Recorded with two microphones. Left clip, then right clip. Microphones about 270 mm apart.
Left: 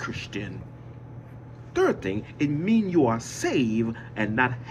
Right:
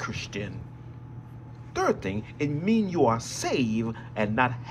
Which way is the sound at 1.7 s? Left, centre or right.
Right.